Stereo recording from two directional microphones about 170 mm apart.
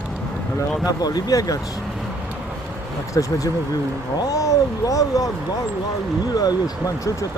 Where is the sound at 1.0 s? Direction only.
20° left (ahead or behind).